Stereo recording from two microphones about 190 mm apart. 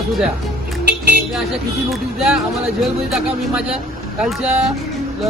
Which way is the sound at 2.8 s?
Centre (ahead or behind).